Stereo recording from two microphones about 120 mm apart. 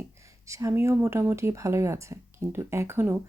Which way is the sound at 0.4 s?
25° right (ahead or behind).